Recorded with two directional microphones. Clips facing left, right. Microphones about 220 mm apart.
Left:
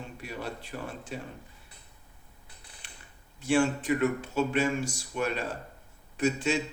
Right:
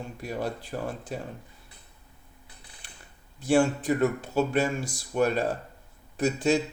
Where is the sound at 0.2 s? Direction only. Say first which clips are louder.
Right 7 dB; 40° right (ahead or behind).